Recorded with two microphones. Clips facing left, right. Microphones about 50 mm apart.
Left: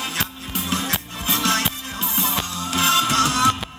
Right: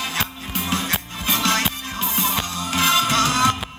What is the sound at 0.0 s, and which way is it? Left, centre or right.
Music, right.